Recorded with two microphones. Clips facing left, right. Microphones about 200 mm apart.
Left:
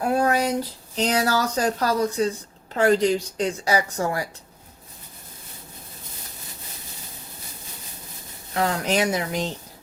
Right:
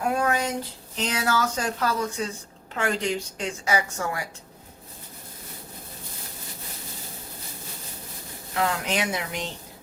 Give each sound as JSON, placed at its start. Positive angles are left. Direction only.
{"t": 0.1, "sound": "a sound", "side_deg": 35}
{"t": 0.9, "sound": "a woman's voice", "side_deg": 35}
{"t": 8.5, "sound": "a woman's voice", "side_deg": 40}